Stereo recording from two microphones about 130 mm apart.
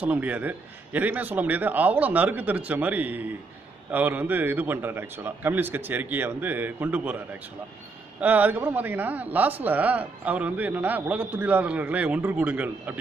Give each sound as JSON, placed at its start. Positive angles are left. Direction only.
{"t": 0.0, "sound": "speech", "side_deg": -10}
{"t": 8.2, "sound": "speech", "side_deg": -10}